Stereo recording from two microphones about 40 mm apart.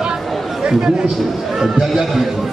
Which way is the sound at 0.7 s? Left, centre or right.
Centre.